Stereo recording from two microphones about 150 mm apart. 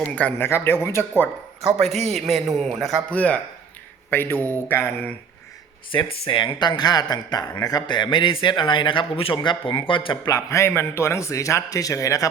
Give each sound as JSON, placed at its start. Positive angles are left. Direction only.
{"t": 0.0, "sound": "speech", "side_deg": 10}
{"t": 1.6, "sound": "a man's voice", "side_deg": 0}
{"t": 6.2, "sound": "a man's voice", "side_deg": 35}